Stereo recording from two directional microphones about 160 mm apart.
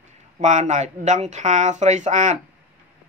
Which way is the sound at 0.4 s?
50° right (ahead or behind).